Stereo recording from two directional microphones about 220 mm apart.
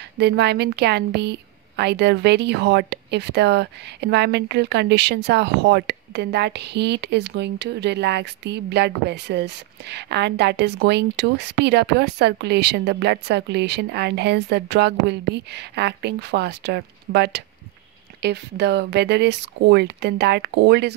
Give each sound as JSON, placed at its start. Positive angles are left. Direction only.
{"t": 0.2, "sound": "a woman's voice", "side_deg": -50}